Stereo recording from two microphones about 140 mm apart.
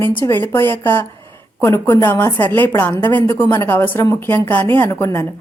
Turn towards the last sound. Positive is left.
turn(degrees=20)  # may be behind; listen again after turning